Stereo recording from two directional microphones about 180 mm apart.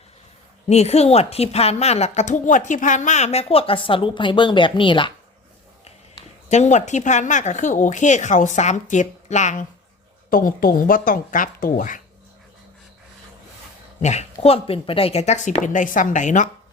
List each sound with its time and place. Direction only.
0.7 s a woman's voice: 35° left (ahead or behind)
5.8 s a woman's voice: 35° left (ahead or behind)
14.0 s a woman's voice: 40° left (ahead or behind)